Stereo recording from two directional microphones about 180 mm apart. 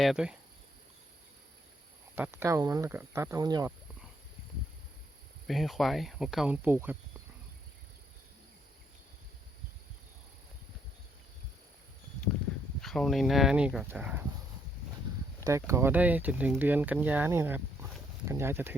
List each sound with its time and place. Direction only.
0.0 s speech: 5° right (ahead or behind)
2.1 s speech: 15° right (ahead or behind)
5.5 s speech: centre (ahead or behind)
12.8 s speech: centre (ahead or behind)
15.4 s speech: 15° right (ahead or behind)